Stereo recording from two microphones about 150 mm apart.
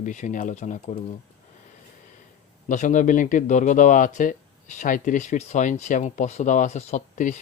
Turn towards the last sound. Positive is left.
turn(degrees=55)  # may be behind; listen again after turning